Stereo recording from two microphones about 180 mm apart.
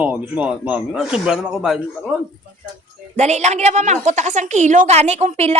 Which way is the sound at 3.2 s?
40° right (ahead or behind).